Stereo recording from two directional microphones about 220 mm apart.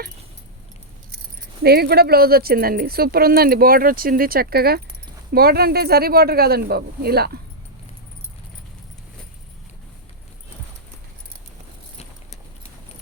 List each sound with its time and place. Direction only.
1.6 s speech: 45° right (ahead or behind)